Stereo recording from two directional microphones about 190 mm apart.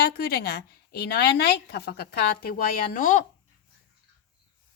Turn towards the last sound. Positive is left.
turn(degrees=45)  # may be behind; listen again after turning